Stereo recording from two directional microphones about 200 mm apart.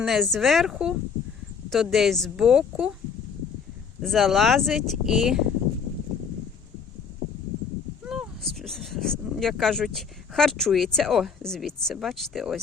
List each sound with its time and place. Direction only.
0.0 s speech: centre (ahead or behind)
4.0 s speech: centre (ahead or behind)
8.0 s speech: 5° right (ahead or behind)